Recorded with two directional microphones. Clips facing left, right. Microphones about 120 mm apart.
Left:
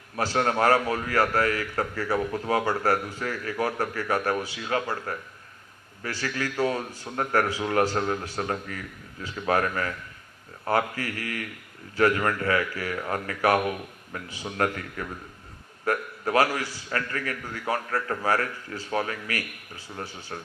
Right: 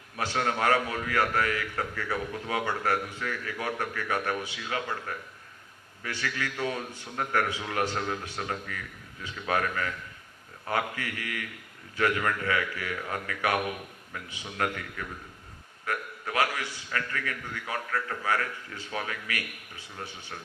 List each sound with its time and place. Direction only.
0.2 s a man's voice: 40° left (ahead or behind)